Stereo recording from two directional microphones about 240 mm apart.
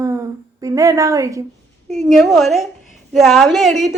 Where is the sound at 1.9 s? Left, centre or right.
Centre.